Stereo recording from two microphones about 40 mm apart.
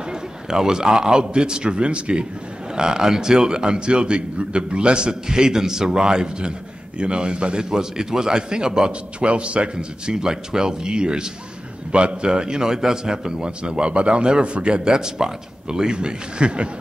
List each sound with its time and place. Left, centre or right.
0.1 s a man's voice: centre